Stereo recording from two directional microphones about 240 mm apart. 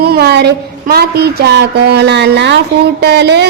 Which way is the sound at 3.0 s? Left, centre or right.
Right.